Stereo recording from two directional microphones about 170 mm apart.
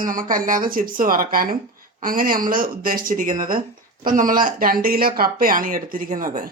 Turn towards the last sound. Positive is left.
turn(degrees=-55)  # may be behind; listen again after turning